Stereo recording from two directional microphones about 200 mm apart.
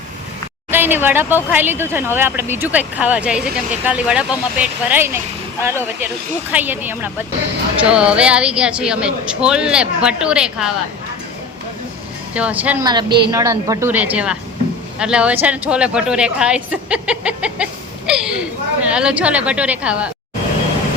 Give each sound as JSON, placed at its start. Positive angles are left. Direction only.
{"t": 0.7, "sound": "a woman's voice", "side_deg": -10}
{"t": 12.3, "sound": "speech", "side_deg": -5}
{"t": 12.8, "sound": "a woman's voice", "side_deg": -20}